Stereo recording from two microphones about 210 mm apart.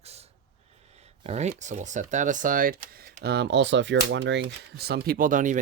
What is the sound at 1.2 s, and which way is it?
Speech, 30° right (ahead or behind).